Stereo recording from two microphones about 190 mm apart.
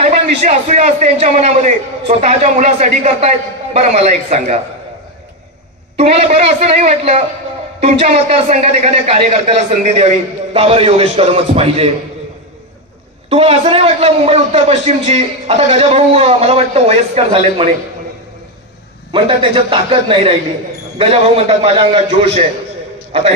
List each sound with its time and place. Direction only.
0.0 s a man's voice: 35° right (ahead or behind)
5.9 s a man's voice: 35° right (ahead or behind)
13.3 s a man's voice: 30° right (ahead or behind)
19.1 s a man's voice: 25° right (ahead or behind)